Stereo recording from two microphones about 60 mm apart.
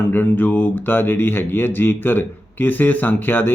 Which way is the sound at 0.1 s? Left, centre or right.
Left.